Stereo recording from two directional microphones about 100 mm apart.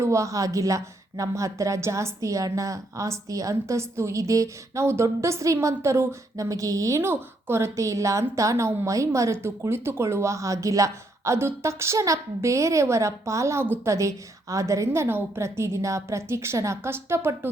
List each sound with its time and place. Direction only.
0.0 s a woman's voice: 30° right (ahead or behind)